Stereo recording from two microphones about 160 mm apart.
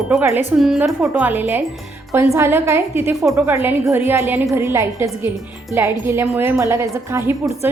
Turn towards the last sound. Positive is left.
turn(degrees=-15)  # may be behind; listen again after turning